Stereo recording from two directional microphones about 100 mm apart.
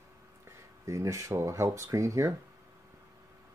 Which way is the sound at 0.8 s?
30° right (ahead or behind).